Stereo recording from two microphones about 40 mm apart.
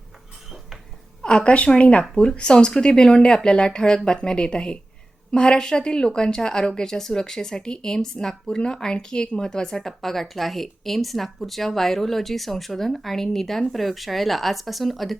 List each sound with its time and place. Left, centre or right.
1.2 s a woman's voice: left; by 15.2 s centre